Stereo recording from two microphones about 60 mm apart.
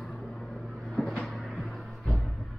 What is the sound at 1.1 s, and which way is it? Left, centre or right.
Music, centre.